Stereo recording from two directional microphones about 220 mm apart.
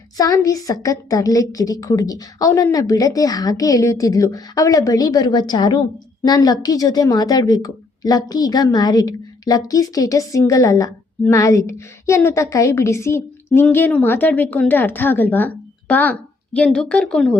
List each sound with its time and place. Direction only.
0.2 s a woman's voice: 15° left (ahead or behind)